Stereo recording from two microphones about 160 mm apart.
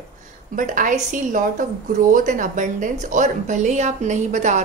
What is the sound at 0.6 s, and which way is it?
A woman's voice, 55° right (ahead or behind).